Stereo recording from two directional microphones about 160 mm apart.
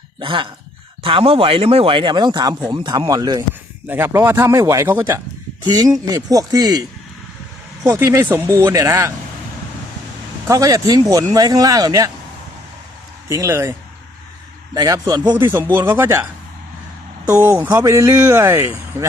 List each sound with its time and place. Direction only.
0.2 s speech: 30° right (ahead or behind)
3.8 s speech: 15° right (ahead or behind)
7.9 s speech: 15° right (ahead or behind)
10.4 s speech: 20° right (ahead or behind)
13.2 s speech: 20° right (ahead or behind)
14.8 s speech: 25° right (ahead or behind)
17.3 s speech: 10° right (ahead or behind)